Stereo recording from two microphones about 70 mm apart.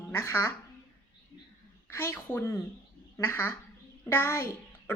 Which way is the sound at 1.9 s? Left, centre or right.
Left.